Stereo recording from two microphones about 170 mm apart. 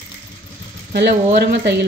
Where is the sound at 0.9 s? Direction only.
75° right (ahead or behind).